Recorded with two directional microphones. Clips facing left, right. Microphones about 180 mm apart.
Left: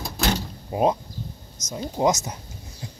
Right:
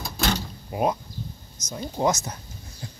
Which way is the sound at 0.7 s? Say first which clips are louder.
Left 3 dB; 25° left (ahead or behind).